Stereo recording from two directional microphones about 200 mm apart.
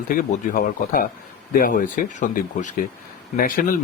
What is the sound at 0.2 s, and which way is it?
Speech, 45° left (ahead or behind).